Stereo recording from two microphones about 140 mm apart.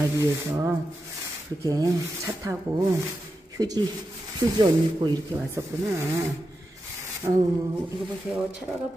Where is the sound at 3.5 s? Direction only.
30° right (ahead or behind).